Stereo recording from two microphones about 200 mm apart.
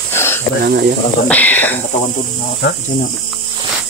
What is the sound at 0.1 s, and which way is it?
Snake, 10° left (ahead or behind).